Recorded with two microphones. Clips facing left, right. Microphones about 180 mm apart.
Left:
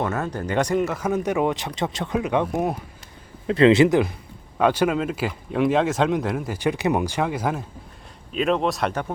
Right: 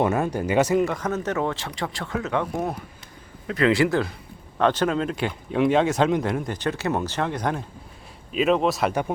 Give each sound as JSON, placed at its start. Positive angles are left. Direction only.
{"t": 0.0, "sound": "speech", "side_deg": -15}